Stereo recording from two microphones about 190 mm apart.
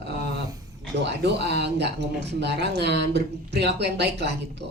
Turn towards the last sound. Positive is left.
turn(degrees=-60)  # may be behind; listen again after turning